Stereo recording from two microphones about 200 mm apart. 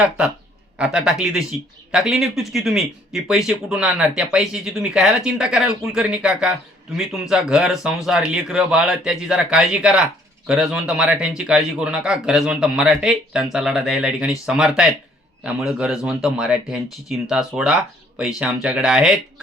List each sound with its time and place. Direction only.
0.8 s speech: 5° right (ahead or behind)